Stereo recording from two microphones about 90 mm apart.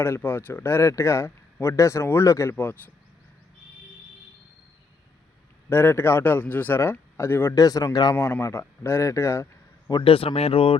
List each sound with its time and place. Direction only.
0.0 s speech: 25° left (ahead or behind)
2.6 s speech: 20° left (ahead or behind)
5.6 s speech: 25° left (ahead or behind)
7.5 s speech: 40° left (ahead or behind)
8.1 s a man's voice: 25° left (ahead or behind)
10.0 s speech: 90° left